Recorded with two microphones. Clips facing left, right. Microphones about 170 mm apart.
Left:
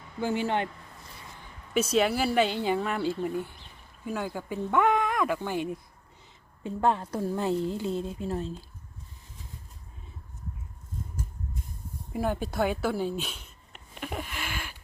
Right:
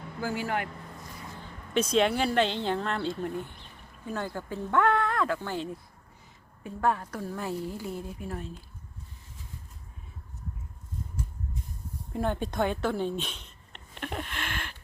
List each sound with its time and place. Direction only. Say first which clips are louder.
0.2 s a woman's voice: left 3 dB; 25° left (ahead or behind)
1.7 s a woman's voice: even; 5° left (ahead or behind); by 8.5 s 25° left (ahead or behind)
12.1 s a sound: even; 5° left (ahead or behind)